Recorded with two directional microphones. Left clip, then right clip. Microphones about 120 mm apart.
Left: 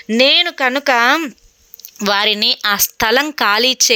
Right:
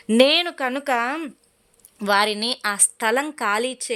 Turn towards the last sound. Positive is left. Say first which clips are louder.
# left 10 dB
turn(degrees=20)  # may be behind; listen again after turning